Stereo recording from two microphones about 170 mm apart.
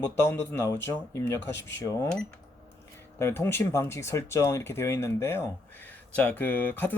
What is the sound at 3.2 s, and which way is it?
Speech, 15° left (ahead or behind).